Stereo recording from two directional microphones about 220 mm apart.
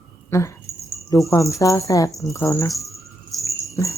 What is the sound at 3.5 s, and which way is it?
Cricket, 15° left (ahead or behind).